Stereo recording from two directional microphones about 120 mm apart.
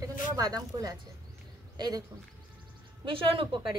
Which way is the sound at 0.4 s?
30° right (ahead or behind).